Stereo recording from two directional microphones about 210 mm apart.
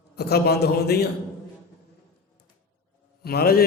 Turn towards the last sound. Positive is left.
turn(degrees=45)  # may be behind; listen again after turning